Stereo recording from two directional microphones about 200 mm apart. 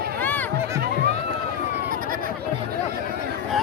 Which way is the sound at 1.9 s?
45° right (ahead or behind).